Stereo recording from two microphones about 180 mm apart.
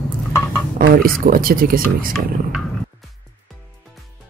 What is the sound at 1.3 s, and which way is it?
Speech, 50° right (ahead or behind).